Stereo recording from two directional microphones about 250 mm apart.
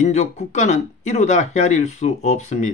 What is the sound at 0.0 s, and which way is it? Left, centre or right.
Speech, left.